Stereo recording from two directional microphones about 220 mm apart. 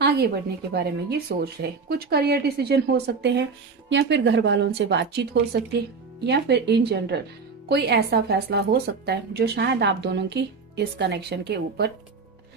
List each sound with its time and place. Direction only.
0.0 s speech: 50° right (ahead or behind)